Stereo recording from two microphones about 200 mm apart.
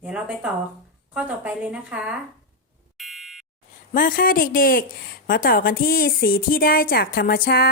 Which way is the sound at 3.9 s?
45° left (ahead or behind).